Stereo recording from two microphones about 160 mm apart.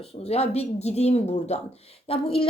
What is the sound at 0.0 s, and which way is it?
Speech, 40° left (ahead or behind).